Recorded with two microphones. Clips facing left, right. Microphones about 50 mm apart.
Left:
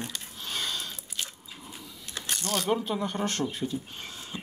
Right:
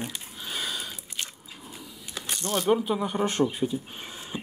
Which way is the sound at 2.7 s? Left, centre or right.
Centre.